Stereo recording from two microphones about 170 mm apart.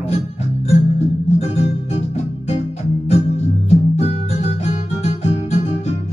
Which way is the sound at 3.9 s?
40° left (ahead or behind).